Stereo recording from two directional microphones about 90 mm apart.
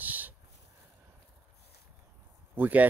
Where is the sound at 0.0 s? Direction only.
20° right (ahead or behind).